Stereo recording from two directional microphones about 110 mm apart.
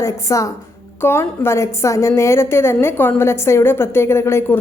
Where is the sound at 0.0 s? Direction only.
30° left (ahead or behind).